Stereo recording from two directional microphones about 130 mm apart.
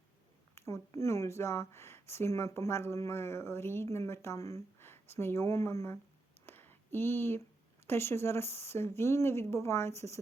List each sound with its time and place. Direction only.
0.5 s speech: 25° left (ahead or behind)
6.4 s a sound: 15° left (ahead or behind)
7.9 s speech: 20° left (ahead or behind)